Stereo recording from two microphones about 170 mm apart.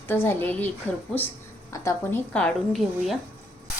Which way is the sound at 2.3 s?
5° left (ahead or behind).